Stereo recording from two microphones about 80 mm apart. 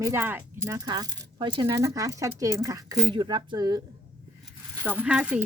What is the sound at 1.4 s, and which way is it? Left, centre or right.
Speech, right.